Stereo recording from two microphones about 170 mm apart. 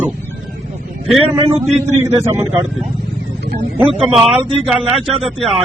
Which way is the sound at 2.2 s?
15° right (ahead or behind).